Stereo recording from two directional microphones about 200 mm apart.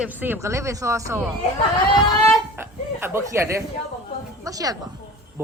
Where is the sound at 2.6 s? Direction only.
10° right (ahead or behind).